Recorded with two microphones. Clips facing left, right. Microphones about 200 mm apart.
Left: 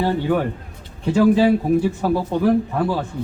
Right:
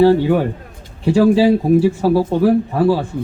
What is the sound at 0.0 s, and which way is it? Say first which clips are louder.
A man's voice: right 7 dB; 10° right (ahead or behind).